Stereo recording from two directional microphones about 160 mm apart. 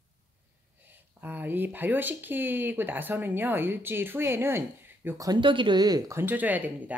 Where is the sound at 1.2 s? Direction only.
10° right (ahead or behind).